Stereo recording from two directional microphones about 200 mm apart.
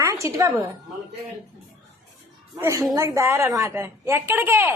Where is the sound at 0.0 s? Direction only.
15° right (ahead or behind).